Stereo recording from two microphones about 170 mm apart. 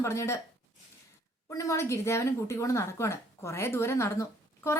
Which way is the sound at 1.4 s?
20° left (ahead or behind).